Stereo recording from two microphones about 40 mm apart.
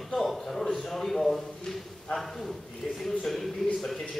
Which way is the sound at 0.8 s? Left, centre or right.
Centre.